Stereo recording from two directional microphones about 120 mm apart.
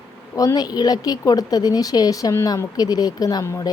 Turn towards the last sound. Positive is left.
turn(degrees=25)  # may be behind; listen again after turning